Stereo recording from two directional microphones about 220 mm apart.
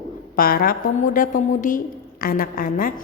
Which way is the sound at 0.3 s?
40° left (ahead or behind).